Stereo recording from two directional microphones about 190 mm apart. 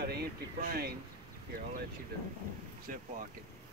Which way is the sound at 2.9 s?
45° right (ahead or behind).